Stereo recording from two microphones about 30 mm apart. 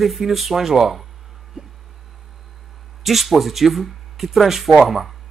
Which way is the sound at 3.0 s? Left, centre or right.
Centre.